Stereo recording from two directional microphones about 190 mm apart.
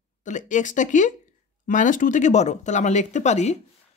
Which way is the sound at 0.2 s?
40° left (ahead or behind).